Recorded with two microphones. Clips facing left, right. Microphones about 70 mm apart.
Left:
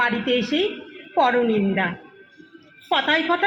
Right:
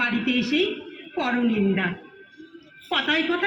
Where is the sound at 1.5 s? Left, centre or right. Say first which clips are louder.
Left 2 dB; left.